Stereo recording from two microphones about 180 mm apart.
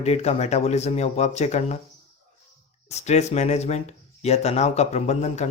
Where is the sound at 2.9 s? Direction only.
40° left (ahead or behind).